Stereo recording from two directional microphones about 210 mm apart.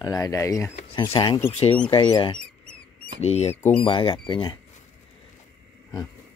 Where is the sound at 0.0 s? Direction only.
15° left (ahead or behind).